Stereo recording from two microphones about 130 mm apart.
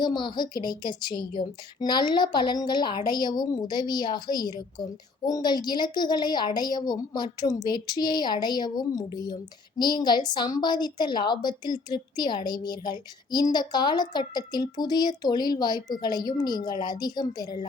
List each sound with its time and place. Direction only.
0.0 s a woman's voice: 35° left (ahead or behind)